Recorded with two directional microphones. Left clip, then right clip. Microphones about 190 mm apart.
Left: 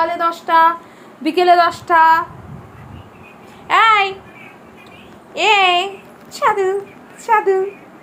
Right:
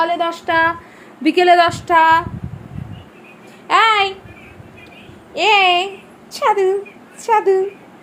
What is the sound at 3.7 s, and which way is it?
Speech, 10° right (ahead or behind).